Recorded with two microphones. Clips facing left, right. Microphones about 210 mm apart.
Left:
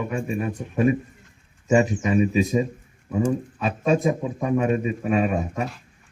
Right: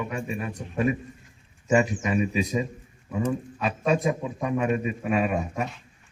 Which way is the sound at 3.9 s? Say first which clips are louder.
Left 4 dB; 35° left (ahead or behind).